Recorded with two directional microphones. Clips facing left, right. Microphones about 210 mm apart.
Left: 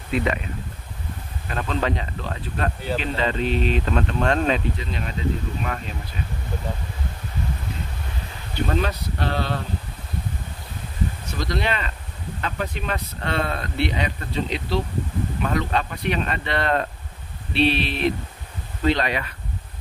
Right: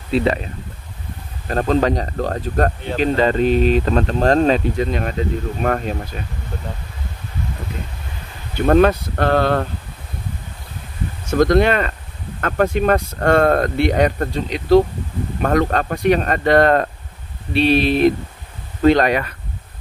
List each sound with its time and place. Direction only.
0.1 s speech: 35° right (ahead or behind)
1.5 s speech: 45° right (ahead or behind)
8.6 s speech: 55° right (ahead or behind)
11.2 s speech: 50° right (ahead or behind)